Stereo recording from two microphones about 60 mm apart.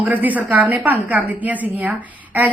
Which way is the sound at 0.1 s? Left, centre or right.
Right.